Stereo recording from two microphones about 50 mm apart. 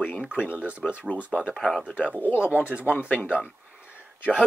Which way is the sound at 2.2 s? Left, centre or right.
Left.